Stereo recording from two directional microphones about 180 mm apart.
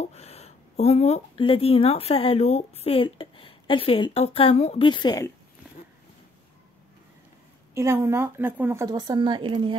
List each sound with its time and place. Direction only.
0.0 s speech: 35° left (ahead or behind)
7.7 s speech: 15° right (ahead or behind)